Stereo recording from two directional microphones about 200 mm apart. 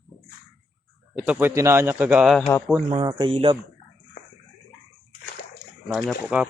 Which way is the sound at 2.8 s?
20° right (ahead or behind).